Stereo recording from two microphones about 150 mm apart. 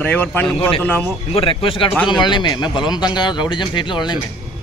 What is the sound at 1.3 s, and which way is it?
Speech, 35° left (ahead or behind).